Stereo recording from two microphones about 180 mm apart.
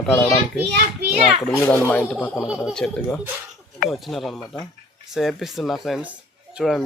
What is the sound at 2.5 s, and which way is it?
Speech, centre (ahead or behind).